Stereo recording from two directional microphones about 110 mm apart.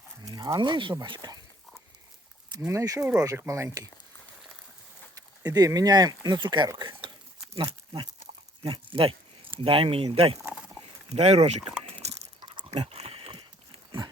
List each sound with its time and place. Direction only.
0.2 s speech: 35° right (ahead or behind)
2.6 s speech: 30° right (ahead or behind)
3.0 s speech: 10° right (ahead or behind)
3.2 s speech: 25° right (ahead or behind)
5.1 s speech: 35° right (ahead or behind)
8.6 s speech: 50° right (ahead or behind)
11.1 s speech: 70° right (ahead or behind)
11.9 s a sound: 70° right (ahead or behind)
12.4 s a sound: 45° right (ahead or behind)
12.7 s a sound: 60° right (ahead or behind)